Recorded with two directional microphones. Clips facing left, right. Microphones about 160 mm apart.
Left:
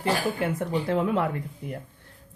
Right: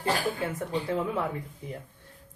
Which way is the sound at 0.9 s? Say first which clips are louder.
Left 5 dB; 70° left (ahead or behind).